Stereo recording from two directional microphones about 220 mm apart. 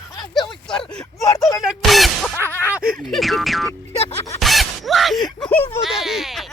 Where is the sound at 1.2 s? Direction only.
15° left (ahead or behind).